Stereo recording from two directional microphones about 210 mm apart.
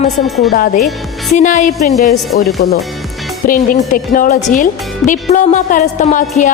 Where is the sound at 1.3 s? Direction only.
35° left (ahead or behind).